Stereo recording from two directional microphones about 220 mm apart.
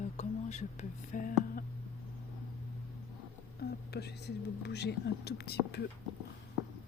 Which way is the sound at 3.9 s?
50° left (ahead or behind).